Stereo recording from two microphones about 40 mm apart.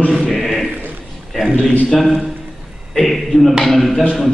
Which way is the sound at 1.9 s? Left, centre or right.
Centre.